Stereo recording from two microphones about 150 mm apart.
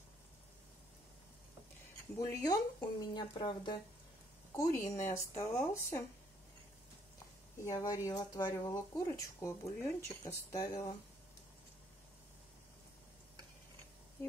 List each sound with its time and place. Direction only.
2.1 s speech: 25° left (ahead or behind)
4.6 s speech: 20° left (ahead or behind)
7.6 s speech: 25° left (ahead or behind)